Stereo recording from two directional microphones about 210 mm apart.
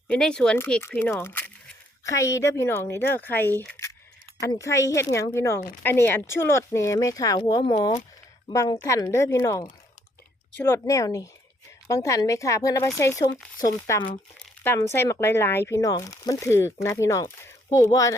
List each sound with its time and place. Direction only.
0.1 s speech: 5° left (ahead or behind)